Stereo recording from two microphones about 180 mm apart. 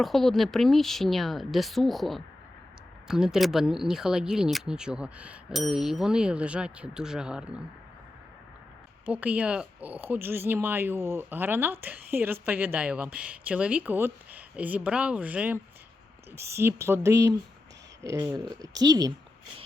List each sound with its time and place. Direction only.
0.0 s speech: centre (ahead or behind)
9.0 s speech: 5° right (ahead or behind)